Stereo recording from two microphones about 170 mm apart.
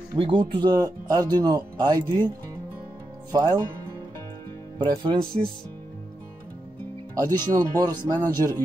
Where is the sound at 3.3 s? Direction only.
25° right (ahead or behind).